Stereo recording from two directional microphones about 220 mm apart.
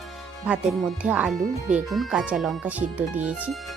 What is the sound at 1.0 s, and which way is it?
Speech, 5° right (ahead or behind).